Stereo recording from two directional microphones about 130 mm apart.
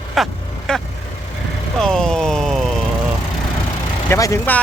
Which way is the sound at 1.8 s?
5° left (ahead or behind).